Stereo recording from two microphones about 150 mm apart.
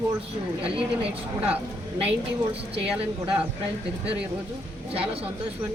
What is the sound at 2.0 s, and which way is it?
Speech, 40° right (ahead or behind).